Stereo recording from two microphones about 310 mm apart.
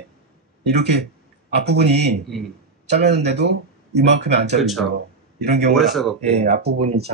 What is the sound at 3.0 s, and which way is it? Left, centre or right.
Speech, right.